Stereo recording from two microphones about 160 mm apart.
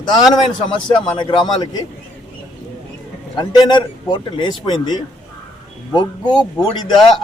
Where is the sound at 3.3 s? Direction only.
30° left (ahead or behind).